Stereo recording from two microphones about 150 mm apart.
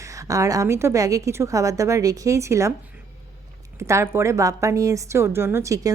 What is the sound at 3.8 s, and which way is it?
A woman's voice, 20° right (ahead or behind).